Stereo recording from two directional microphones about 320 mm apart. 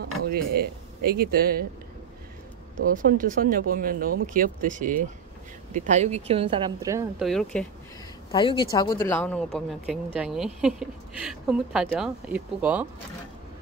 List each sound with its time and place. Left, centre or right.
0.0 s speech: right
2.9 s speech: right; by 7.6 s centre
8.3 s speech: centre